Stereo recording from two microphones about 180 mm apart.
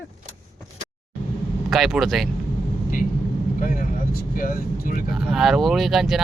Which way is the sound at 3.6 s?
45° left (ahead or behind).